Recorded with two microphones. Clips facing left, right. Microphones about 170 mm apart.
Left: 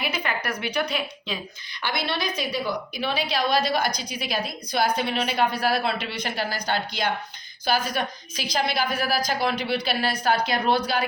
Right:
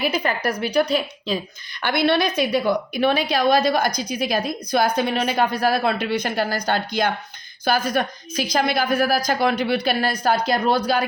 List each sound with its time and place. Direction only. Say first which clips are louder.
0.0 s a woman's voice: right 6 dB; 40° right (ahead or behind)
1.8 s a woman's voice: right 9 dB; 60° right (ahead or behind); by 11.0 s 45° right (ahead or behind)